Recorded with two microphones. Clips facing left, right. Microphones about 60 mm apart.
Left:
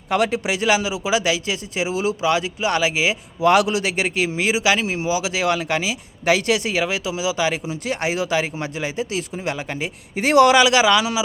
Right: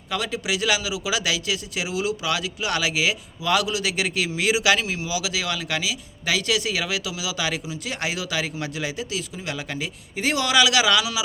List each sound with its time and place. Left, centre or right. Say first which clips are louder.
0.1 s a man's voice: left 6 dB; left
3.4 s a man's voice: left 7 dB; left
4.9 s a man's voice: left 6 dB; left
10.2 s a man's voice: left 7 dB; left